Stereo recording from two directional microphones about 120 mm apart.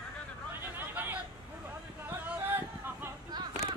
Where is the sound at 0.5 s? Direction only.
15° right (ahead or behind).